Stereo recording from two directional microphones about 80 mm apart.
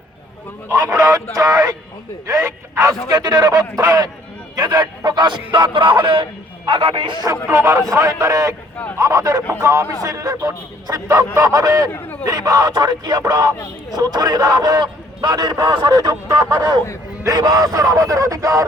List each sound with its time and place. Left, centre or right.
0.9 s a man's voice: right
2.2 s speech: right
3.1 s a man's voice: right
7.5 s a man's voice: right
11.9 s a man's voice: left
12.2 s a man's voice: right